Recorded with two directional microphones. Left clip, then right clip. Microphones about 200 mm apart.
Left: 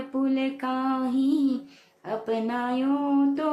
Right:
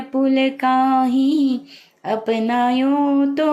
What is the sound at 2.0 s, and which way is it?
Speech, 20° right (ahead or behind).